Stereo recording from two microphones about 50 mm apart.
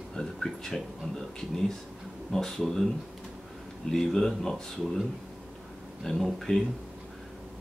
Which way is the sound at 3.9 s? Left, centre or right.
Centre.